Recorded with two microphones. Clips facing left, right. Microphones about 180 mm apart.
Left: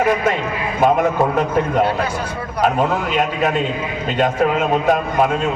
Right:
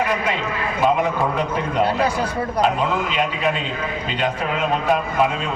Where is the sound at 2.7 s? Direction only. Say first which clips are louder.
Left 3 dB; 45° left (ahead or behind).